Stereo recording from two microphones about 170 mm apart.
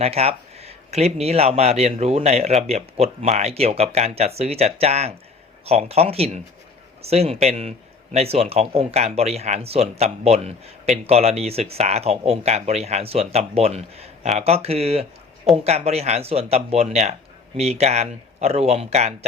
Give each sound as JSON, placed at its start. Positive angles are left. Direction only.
{"t": 0.0, "sound": "speech", "side_deg": -35}